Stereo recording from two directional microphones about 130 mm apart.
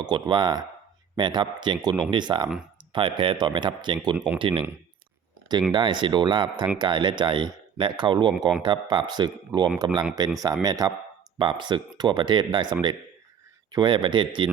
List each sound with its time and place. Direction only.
0.0 s speech: 35° right (ahead or behind)
5.7 s speech: 40° right (ahead or behind)
8.3 s speech: centre (ahead or behind)
8.6 s speech: 35° right (ahead or behind)